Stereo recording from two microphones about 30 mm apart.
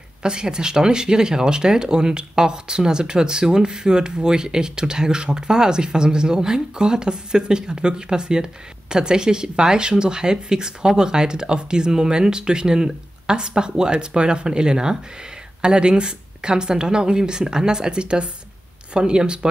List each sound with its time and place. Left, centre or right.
0.2 s speech: right